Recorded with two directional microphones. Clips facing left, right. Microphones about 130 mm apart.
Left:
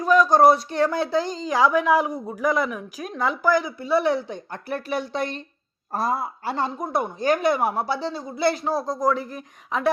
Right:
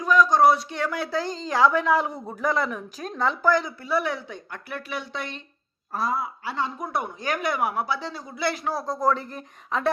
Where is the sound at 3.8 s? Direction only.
30° left (ahead or behind).